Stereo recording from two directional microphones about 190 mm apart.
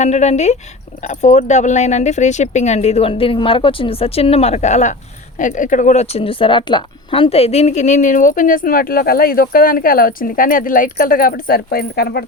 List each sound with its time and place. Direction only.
0.0 s a woman's voice: 35° left (ahead or behind); by 12.2 s 55° left (ahead or behind)